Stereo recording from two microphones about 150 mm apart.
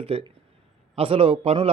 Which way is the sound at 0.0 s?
40° right (ahead or behind).